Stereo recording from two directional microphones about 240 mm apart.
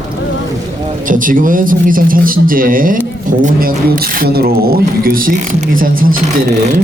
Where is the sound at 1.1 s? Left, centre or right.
Right.